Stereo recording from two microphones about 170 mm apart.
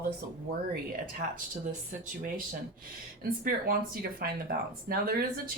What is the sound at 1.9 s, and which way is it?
Speech, 55° right (ahead or behind).